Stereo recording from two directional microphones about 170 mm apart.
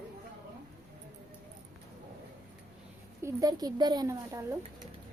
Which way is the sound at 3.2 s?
20° right (ahead or behind).